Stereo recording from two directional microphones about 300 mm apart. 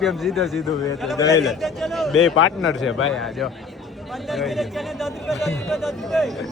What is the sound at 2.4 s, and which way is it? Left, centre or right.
Speech, left.